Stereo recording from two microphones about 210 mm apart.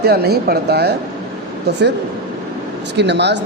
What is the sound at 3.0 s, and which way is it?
Speech, 55° right (ahead or behind).